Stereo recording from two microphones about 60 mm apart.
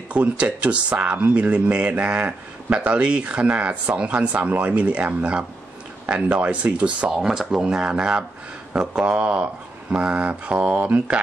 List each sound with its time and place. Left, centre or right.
0.1 s speech: right
7.1 s speech: centre